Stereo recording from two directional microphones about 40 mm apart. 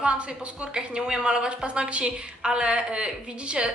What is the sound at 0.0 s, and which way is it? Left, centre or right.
A woman's voice, right.